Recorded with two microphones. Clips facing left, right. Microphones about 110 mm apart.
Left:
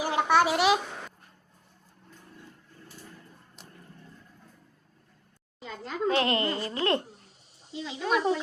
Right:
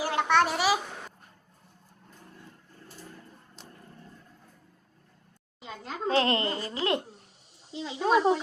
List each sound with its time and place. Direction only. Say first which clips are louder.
0.0 s a sound: left 1 dB; 15° left (ahead or behind); by 0.8 s centre (ahead or behind)
3.6 s vehicle: right 2 dB; 5° left (ahead or behind)
5.5 s speech: left 4 dB; 20° right (ahead or behind)
7.9 s speech: right 4 dB; 30° right (ahead or behind)